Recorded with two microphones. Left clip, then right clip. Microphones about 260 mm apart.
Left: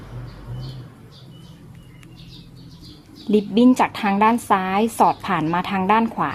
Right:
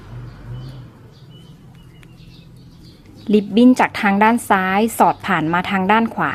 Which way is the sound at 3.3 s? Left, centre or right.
Centre.